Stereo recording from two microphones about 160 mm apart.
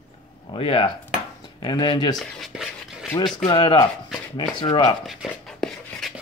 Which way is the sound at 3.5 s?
30° left (ahead or behind).